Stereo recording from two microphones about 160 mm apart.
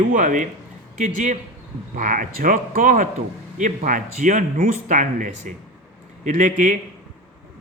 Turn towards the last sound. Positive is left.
turn(degrees=-55)  # may be behind; listen again after turning